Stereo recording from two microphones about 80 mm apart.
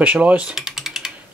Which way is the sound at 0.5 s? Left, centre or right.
Centre.